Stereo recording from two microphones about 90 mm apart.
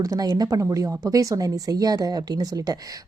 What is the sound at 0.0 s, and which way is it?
Speech, 45° right (ahead or behind).